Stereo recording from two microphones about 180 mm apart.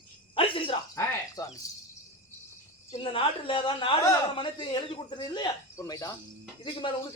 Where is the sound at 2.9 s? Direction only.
30° left (ahead or behind).